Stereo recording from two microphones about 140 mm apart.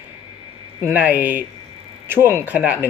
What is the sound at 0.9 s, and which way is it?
Speech, 10° right (ahead or behind).